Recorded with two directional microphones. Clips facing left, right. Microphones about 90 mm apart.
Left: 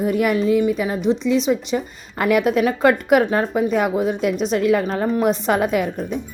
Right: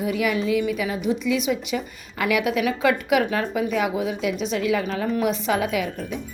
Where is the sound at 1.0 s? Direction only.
30° left (ahead or behind).